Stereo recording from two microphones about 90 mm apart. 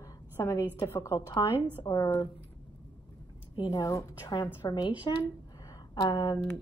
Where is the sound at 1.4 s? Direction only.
45° left (ahead or behind).